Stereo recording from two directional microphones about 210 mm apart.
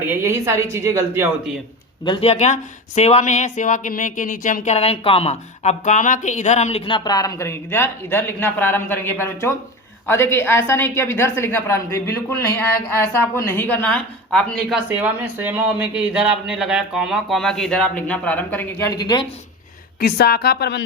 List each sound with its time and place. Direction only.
0.0 s speech: 10° right (ahead or behind)
2.0 s a woman's voice: 25° left (ahead or behind)
20.0 s a woman's voice: 45° left (ahead or behind)